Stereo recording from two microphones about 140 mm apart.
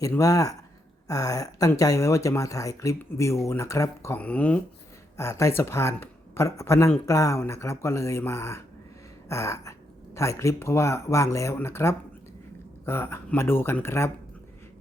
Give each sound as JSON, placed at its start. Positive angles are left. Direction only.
{"t": 0.0, "sound": "speech", "side_deg": 25}
{"t": 5.1, "sound": "speech", "side_deg": 20}